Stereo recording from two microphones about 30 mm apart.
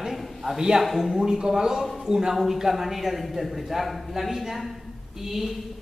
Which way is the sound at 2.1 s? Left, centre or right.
Centre.